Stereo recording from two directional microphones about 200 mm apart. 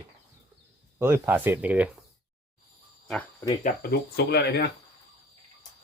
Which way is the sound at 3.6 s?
50° left (ahead or behind).